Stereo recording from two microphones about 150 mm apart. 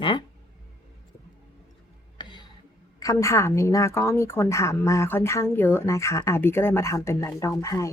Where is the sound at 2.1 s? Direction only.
30° left (ahead or behind).